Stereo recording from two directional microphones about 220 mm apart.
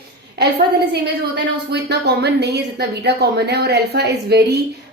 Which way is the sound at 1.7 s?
50° right (ahead or behind).